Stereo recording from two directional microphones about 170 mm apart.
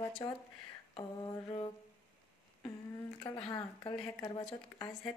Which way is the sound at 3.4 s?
25° left (ahead or behind).